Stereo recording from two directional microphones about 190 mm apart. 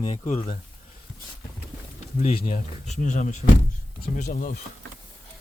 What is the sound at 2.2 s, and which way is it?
A man's voice, 35° left (ahead or behind).